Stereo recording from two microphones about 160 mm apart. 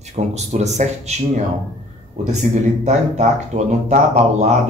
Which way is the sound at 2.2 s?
45° right (ahead or behind).